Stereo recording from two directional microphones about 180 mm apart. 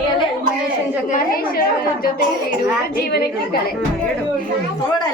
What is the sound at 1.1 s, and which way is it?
A woman's voice, 55° left (ahead or behind).